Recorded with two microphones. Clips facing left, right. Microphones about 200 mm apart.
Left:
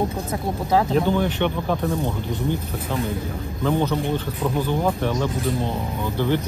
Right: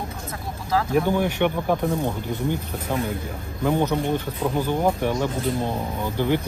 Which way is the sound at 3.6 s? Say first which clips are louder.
Even; 15° right (ahead or behind).